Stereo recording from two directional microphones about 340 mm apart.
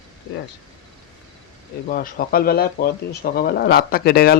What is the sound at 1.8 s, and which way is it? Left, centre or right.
Speech, left.